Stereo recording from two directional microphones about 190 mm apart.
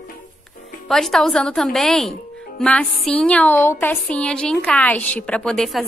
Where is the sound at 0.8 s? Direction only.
Centre (ahead or behind).